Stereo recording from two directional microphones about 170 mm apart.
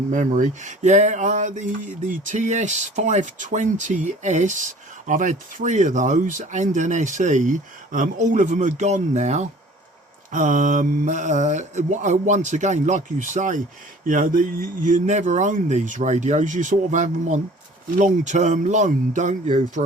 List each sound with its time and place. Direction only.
0.1 s speech: 50° right (ahead or behind)